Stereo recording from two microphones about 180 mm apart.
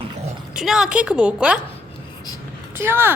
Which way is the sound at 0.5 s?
5° right (ahead or behind).